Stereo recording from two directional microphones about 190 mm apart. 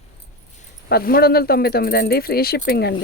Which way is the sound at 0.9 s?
50° left (ahead or behind).